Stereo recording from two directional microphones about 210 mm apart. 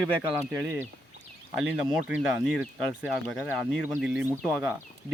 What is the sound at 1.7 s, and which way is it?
Speech, 5° right (ahead or behind).